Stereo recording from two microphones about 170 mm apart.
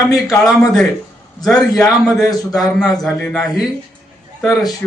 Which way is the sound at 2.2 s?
20° left (ahead or behind).